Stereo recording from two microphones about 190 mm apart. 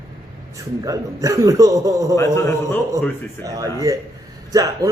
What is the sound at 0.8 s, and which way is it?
Speech, 15° right (ahead or behind).